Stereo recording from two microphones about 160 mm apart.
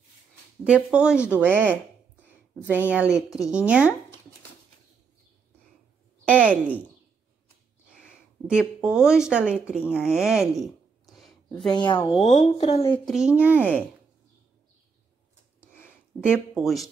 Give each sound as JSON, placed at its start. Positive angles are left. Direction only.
{"t": 0.7, "sound": "speech", "side_deg": -5}
{"t": 2.9, "sound": "speech", "side_deg": -10}
{"t": 3.2, "sound": "speech", "side_deg": 20}
{"t": 3.4, "sound": "speech", "side_deg": -5}
{"t": 6.2, "sound": "a woman's voice", "side_deg": -10}
{"t": 7.9, "sound": "speech", "side_deg": -5}
{"t": 11.1, "sound": "a sound", "side_deg": 0}
{"t": 11.7, "sound": "speech", "side_deg": 30}
{"t": 12.2, "sound": "a woman's voice", "side_deg": 45}
{"t": 13.0, "sound": "speech", "side_deg": -5}
{"t": 15.7, "sound": "a sound", "side_deg": 15}
{"t": 16.5, "sound": "speech", "side_deg": 0}